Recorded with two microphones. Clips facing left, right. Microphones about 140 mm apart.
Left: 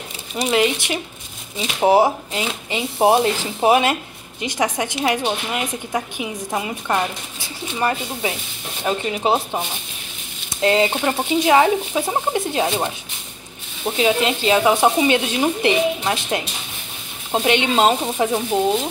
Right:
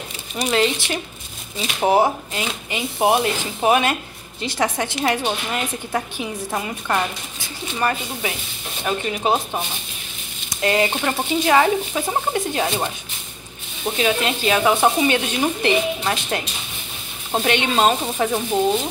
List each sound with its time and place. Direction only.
0.4 s a woman's voice: 15° left (ahead or behind)
10.6 s speech: 25° left (ahead or behind)
10.9 s a woman's voice: 10° left (ahead or behind)
13.9 s a woman's voice: 20° left (ahead or behind)